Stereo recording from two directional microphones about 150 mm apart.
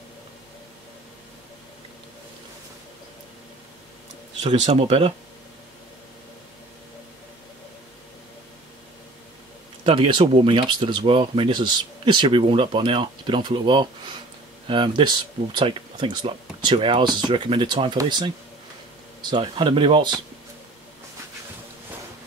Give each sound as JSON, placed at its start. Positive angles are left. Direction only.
{"t": 4.4, "sound": "speech", "side_deg": -50}
{"t": 9.8, "sound": "speech", "side_deg": -35}
{"t": 19.3, "sound": "speech", "side_deg": -35}